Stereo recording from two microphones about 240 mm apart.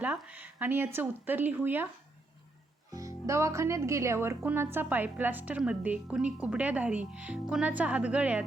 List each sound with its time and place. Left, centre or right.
0.0 s a woman's voice: centre
2.9 s a woman's voice: centre